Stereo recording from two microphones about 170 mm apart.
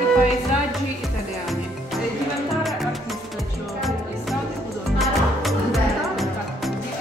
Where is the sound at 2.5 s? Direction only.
Centre (ahead or behind).